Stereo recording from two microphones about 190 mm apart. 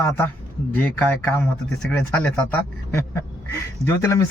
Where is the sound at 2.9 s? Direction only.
15° left (ahead or behind).